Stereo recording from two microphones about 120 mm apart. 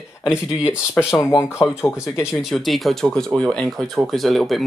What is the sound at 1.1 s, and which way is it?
Speech, 25° left (ahead or behind).